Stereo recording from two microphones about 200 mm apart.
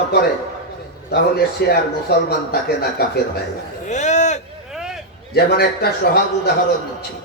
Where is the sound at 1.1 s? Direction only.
50° left (ahead or behind).